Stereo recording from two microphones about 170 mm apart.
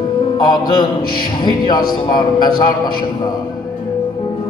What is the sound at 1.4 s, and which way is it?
A man's voice, 25° left (ahead or behind).